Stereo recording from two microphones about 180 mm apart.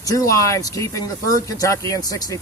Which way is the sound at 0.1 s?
20° left (ahead or behind).